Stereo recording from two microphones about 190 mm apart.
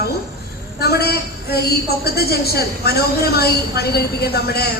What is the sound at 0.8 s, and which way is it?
A woman's voice, 55° left (ahead or behind).